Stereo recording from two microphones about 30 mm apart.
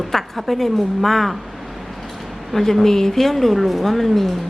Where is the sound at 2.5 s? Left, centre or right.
Centre.